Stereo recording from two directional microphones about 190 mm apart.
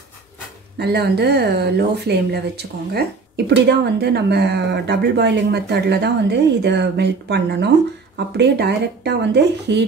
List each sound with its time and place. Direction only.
0.7 s speech: 60° right (ahead or behind)